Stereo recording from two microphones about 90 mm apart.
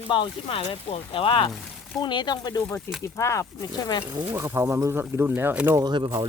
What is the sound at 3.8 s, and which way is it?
Speech, 50° left (ahead or behind).